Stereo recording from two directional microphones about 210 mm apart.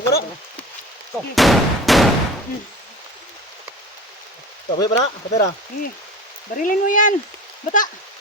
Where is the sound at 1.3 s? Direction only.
Centre (ahead or behind).